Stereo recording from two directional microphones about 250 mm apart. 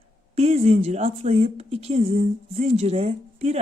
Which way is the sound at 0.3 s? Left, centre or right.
Right.